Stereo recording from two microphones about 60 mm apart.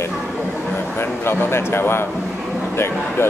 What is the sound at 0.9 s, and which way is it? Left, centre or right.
Speech, left.